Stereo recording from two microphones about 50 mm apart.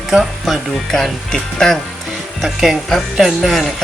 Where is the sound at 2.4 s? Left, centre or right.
Centre.